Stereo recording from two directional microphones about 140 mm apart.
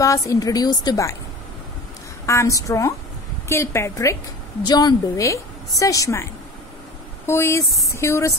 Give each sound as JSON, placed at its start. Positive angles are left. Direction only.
{"t": 0.0, "sound": "a woman's voice", "side_deg": 25}
{"t": 2.2, "sound": "a woman's voice", "side_deg": 20}
{"t": 7.2, "sound": "a woman's voice", "side_deg": 20}